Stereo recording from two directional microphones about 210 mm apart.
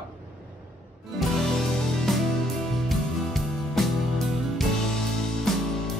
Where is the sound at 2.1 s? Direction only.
Centre (ahead or behind).